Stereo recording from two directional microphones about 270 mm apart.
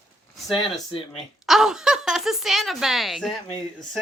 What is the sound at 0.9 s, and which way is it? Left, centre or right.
Speech, centre.